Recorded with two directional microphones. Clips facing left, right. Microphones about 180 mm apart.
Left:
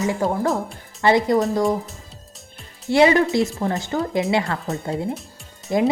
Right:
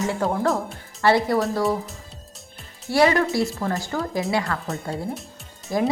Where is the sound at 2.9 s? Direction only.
20° left (ahead or behind).